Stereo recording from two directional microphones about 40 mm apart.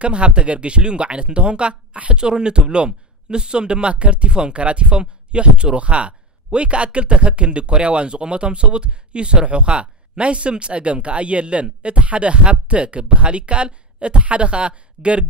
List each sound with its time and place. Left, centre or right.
0.0 s speech: right